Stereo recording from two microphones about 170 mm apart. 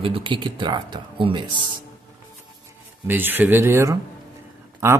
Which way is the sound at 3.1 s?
10° right (ahead or behind).